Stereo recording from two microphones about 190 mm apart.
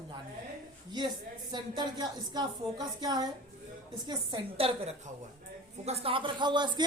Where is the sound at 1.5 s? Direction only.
20° right (ahead or behind).